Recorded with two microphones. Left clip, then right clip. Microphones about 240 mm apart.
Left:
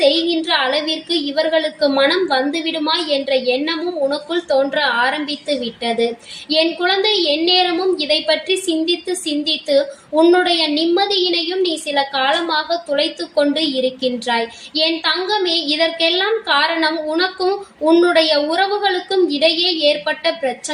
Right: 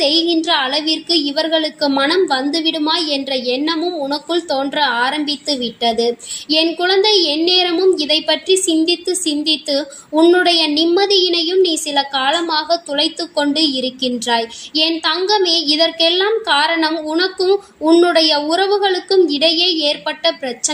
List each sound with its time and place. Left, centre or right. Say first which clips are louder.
0.0 s a woman's voice: even; right